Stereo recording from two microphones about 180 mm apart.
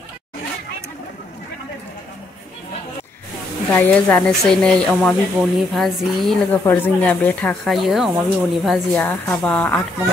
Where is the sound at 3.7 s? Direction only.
10° left (ahead or behind).